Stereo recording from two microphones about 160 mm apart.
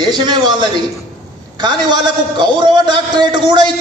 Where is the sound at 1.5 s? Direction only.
25° right (ahead or behind).